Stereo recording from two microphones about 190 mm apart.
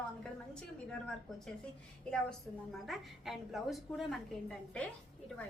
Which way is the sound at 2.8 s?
Centre (ahead or behind).